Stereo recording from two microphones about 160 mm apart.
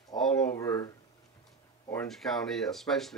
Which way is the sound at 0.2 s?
5° left (ahead or behind).